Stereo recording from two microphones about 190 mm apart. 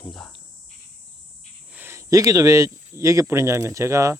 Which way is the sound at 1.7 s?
10° right (ahead or behind).